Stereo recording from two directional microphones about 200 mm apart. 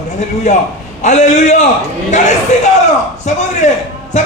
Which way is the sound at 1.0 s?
35° left (ahead or behind).